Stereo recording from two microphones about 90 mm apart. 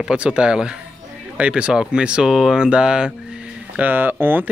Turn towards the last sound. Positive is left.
turn(degrees=-25)  # may be behind; listen again after turning